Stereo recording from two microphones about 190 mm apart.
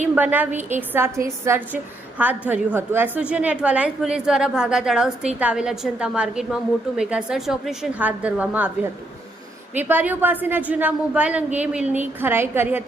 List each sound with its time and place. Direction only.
0.2 s a woman's voice: 10° right (ahead or behind)
9.7 s a woman's voice: 10° right (ahead or behind)